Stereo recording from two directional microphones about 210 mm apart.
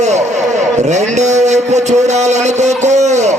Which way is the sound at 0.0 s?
35° right (ahead or behind).